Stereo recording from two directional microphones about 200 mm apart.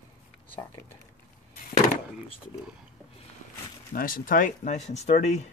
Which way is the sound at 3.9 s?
45° left (ahead or behind).